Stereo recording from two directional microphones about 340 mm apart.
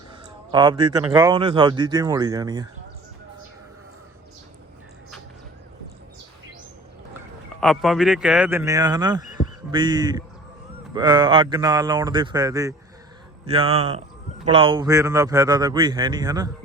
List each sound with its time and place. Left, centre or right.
0.5 s speech: centre
7.6 s speech: centre